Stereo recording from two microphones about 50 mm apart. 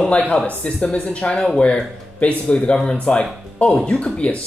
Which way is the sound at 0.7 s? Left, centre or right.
Left.